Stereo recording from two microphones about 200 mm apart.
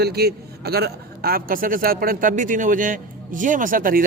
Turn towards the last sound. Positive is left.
turn(degrees=-45)  # may be behind; listen again after turning